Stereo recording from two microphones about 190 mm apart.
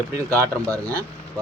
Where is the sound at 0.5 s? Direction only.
5° left (ahead or behind).